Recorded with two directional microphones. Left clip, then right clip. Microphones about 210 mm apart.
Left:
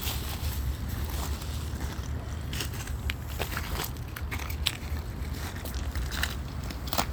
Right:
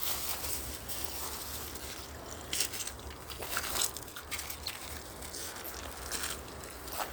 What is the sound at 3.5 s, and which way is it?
Crushing, 50° right (ahead or behind).